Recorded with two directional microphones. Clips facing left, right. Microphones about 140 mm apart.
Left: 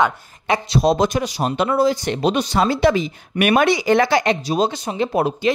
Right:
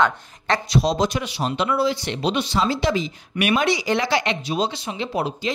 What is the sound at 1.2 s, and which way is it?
Speech, 40° left (ahead or behind).